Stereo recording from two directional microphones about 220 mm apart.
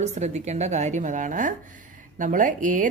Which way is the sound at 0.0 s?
30° right (ahead or behind).